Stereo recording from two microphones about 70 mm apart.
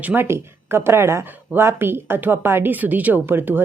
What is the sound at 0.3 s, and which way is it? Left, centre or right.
A woman's voice, right.